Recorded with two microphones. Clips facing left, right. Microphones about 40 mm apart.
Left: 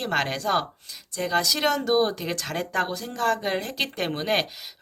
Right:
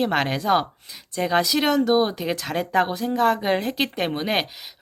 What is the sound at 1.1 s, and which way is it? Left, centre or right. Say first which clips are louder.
Speech: right 3 dB; right.